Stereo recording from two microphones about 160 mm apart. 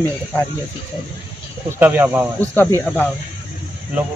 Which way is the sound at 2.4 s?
10° left (ahead or behind).